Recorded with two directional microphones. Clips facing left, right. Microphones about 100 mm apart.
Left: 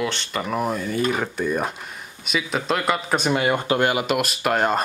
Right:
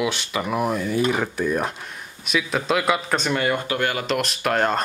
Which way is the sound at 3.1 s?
15° left (ahead or behind).